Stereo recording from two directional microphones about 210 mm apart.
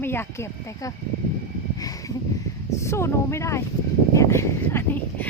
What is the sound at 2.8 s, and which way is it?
Speech, 10° left (ahead or behind).